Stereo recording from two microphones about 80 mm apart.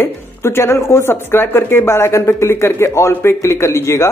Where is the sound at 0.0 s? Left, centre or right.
Left.